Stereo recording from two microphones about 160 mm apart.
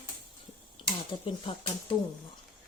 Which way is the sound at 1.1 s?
30° left (ahead or behind).